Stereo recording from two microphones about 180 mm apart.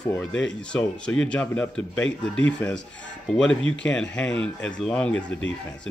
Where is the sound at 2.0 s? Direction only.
90° left.